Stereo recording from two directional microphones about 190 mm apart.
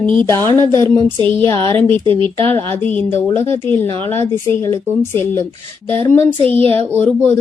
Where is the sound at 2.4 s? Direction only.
10° left (ahead or behind).